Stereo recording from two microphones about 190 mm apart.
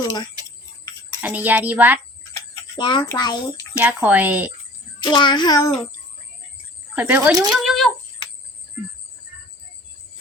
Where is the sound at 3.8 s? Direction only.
10° right (ahead or behind).